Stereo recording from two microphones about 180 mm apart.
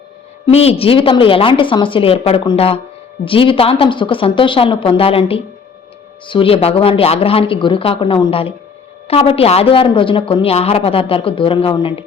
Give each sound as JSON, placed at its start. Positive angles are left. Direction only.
{"t": 0.5, "sound": "a woman's voice", "side_deg": 35}